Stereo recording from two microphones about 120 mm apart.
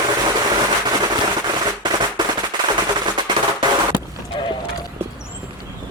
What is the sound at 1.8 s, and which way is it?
Firecracker, 40° right (ahead or behind).